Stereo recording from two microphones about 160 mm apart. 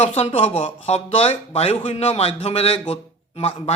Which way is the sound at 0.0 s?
40° left (ahead or behind).